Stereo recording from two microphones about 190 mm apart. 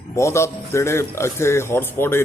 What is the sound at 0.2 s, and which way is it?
A man's voice, 15° left (ahead or behind).